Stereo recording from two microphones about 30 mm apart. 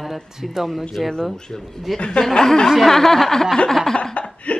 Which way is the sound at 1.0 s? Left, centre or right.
Centre.